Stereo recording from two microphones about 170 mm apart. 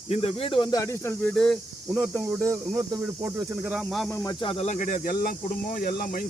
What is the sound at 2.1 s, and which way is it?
Speech, 15° right (ahead or behind).